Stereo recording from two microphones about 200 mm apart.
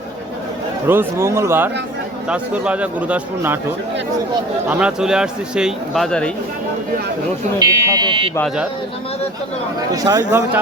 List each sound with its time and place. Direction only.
0.9 s a man's voice: 10° right (ahead or behind)
4.7 s speech: 5° right (ahead or behind)
7.6 s speech: 15° right (ahead or behind)
8.4 s speech: centre (ahead or behind)
9.9 s a man's voice: 20° right (ahead or behind)